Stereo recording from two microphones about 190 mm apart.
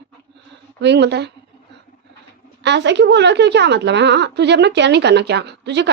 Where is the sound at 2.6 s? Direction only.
65° right (ahead or behind).